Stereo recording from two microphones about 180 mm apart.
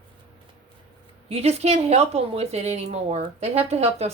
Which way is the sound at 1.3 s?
35° right (ahead or behind).